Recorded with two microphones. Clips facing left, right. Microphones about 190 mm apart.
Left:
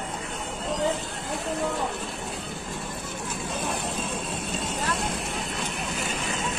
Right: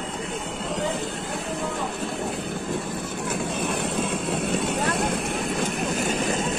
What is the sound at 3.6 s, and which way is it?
Vehicle, 65° right (ahead or behind).